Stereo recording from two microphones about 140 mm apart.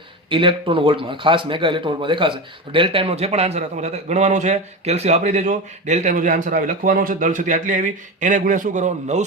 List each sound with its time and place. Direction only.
0.3 s a man's voice: 40° right (ahead or behind); by 9.2 s 55° right (ahead or behind)